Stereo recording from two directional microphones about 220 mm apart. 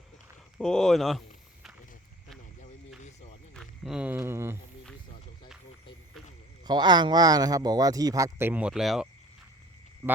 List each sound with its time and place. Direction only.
0.6 s speech: centre (ahead or behind)
3.5 s speech: centre (ahead or behind)
6.7 s speech: 20° right (ahead or behind); by 9.0 s centre (ahead or behind)
10.0 s a sound: 15° right (ahead or behind)